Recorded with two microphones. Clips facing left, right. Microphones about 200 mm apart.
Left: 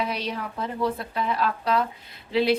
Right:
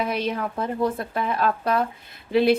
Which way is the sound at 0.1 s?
50° right (ahead or behind).